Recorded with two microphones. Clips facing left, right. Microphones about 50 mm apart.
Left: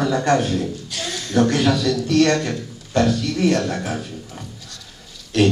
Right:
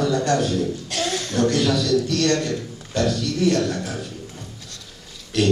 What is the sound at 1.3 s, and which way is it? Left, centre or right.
A man's voice, left.